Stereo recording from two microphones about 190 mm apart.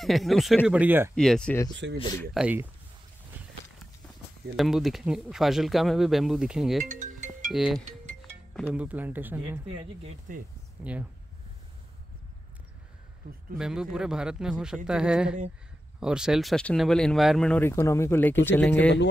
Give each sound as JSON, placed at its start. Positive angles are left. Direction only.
{"t": 0.0, "sound": "speech", "side_deg": 0}
{"t": 1.1, "sound": "speech", "side_deg": 5}
{"t": 1.8, "sound": "speech", "side_deg": -75}
{"t": 2.3, "sound": "speech", "side_deg": -10}
{"t": 4.6, "sound": "speech", "side_deg": 0}
{"t": 6.8, "sound": "music", "side_deg": -40}
{"t": 7.5, "sound": "speech", "side_deg": 0}
{"t": 10.3, "sound": "speech", "side_deg": -45}
{"t": 10.8, "sound": "speech", "side_deg": -5}
{"t": 13.2, "sound": "speech", "side_deg": -50}
{"t": 13.6, "sound": "speech", "side_deg": -5}